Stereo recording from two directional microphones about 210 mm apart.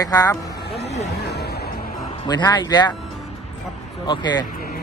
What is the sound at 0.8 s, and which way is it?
Speech, 30° left (ahead or behind).